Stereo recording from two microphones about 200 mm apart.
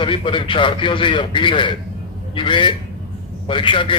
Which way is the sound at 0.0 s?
25° left (ahead or behind).